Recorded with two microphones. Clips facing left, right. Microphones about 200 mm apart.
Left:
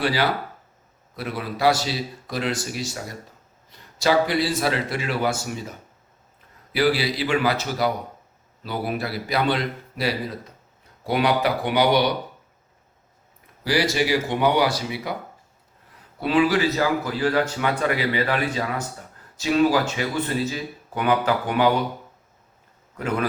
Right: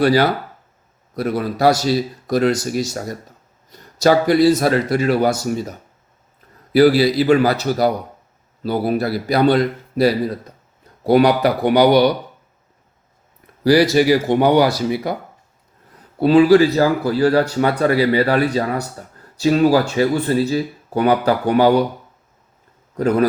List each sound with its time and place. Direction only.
0.0 s a man's voice: 45° right (ahead or behind)
6.7 s speech: 40° right (ahead or behind)
13.7 s a man's voice: 40° right (ahead or behind)
16.2 s speech: 35° right (ahead or behind)
23.0 s speech: 40° right (ahead or behind)